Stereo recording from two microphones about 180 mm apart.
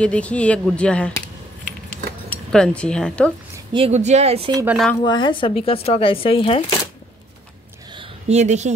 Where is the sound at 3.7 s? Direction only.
35° right (ahead or behind).